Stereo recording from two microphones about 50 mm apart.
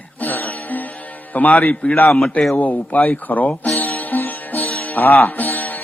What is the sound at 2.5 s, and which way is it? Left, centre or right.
A man's voice, left.